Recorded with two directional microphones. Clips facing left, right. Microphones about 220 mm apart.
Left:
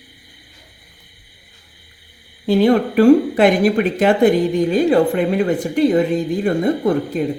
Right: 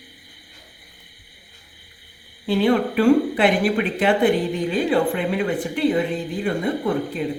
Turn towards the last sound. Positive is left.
turn(degrees=45)  # may be behind; listen again after turning